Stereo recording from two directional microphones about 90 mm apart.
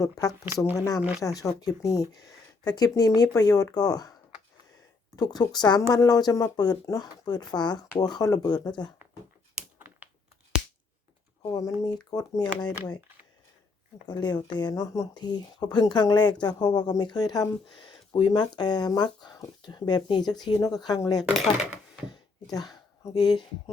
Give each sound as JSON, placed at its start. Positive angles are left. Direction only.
{"t": 0.0, "sound": "speech", "side_deg": 40}
{"t": 5.1, "sound": "speech", "side_deg": 50}
{"t": 9.7, "sound": "a sound", "side_deg": -20}
{"t": 11.4, "sound": "speech", "side_deg": 40}
{"t": 14.1, "sound": "speech", "side_deg": 55}
{"t": 22.1, "sound": "a sound", "side_deg": 50}
{"t": 23.1, "sound": "speech", "side_deg": 50}